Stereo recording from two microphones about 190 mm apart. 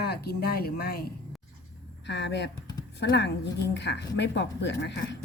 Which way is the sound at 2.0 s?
65° left (ahead or behind).